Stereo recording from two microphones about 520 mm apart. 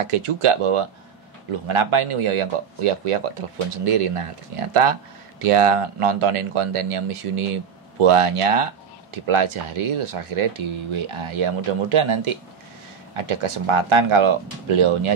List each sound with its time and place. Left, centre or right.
0.0 s speech: right
9.2 s speech: right